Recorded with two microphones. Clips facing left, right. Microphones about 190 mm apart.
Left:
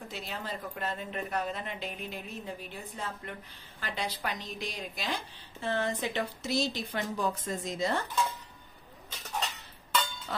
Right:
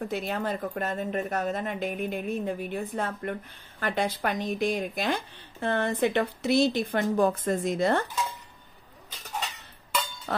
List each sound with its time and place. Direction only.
0.1 s a woman's voice: 55° right (ahead or behind)